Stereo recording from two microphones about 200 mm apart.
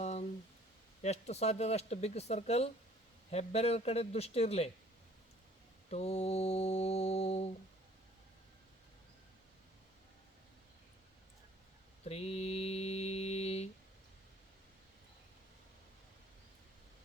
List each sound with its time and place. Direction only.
0.0 s a sound: 35° left (ahead or behind)
1.0 s speech: 35° left (ahead or behind)
5.9 s speech: 30° left (ahead or behind)
12.0 s mantra: 30° left (ahead or behind)